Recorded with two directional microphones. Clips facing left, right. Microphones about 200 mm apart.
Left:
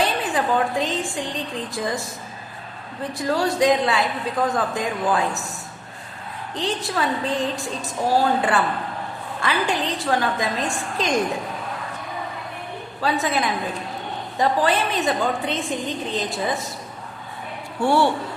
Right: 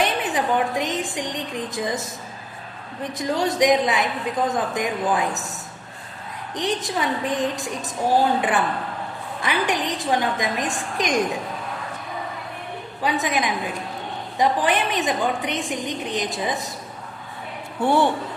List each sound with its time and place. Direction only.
0.0 s a woman's voice: 20° right (ahead or behind)
3.4 s a woman's voice: 15° right (ahead or behind)
6.5 s a woman's voice: 15° right (ahead or behind)
13.0 s a woman's voice: 15° right (ahead or behind)
17.7 s speech: 20° right (ahead or behind)